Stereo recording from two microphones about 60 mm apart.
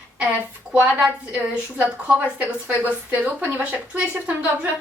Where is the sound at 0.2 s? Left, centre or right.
Right.